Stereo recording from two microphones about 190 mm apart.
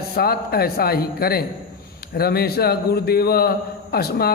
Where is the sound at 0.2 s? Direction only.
55° left (ahead or behind).